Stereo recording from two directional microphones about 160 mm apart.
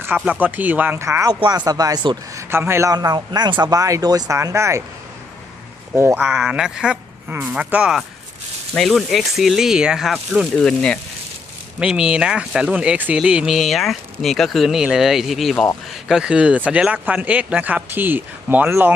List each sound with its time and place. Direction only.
0.0 s speech: 10° right (ahead or behind)
2.5 s speech: 15° right (ahead or behind)
5.9 s speech: 15° right (ahead or behind)
6.2 s speech: centre (ahead or behind)